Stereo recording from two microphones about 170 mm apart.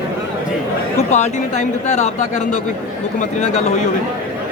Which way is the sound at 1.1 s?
40° left (ahead or behind).